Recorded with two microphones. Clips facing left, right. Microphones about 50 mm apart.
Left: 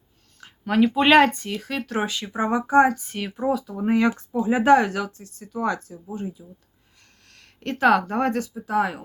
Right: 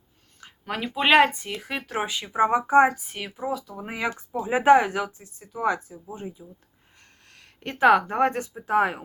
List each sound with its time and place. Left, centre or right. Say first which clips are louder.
0.3 s speech: left 11 dB; centre
4.2 s speech: left 3 dB; centre; by 9.0 s right